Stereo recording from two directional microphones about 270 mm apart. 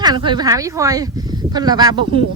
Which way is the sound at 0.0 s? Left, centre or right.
Centre.